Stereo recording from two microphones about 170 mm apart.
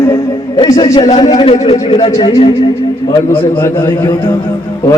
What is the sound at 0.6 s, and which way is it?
A man's voice, 30° left (ahead or behind).